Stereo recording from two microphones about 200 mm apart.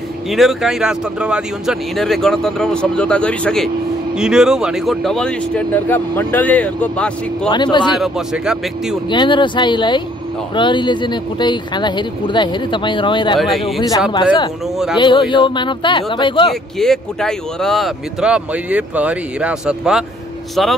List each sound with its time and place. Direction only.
0.3 s speech: centre (ahead or behind)
7.4 s speech: 20° left (ahead or behind)
7.9 s speech: centre (ahead or behind)
9.1 s speech: 25° left (ahead or behind)
13.4 s speech: centre (ahead or behind)
13.7 s speech: 20° left (ahead or behind)
16.7 s speech: centre (ahead or behind)